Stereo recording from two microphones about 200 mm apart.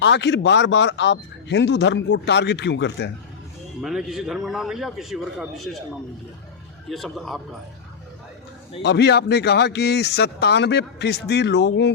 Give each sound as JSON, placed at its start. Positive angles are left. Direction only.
{"t": 0.0, "sound": "speech", "side_deg": 60}
{"t": 3.8, "sound": "a man's voice", "side_deg": -5}
{"t": 6.9, "sound": "a man's voice", "side_deg": 0}
{"t": 8.8, "sound": "speech", "side_deg": 55}